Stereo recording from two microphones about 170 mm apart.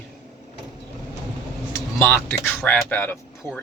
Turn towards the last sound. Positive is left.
turn(degrees=10)  # may be behind; listen again after turning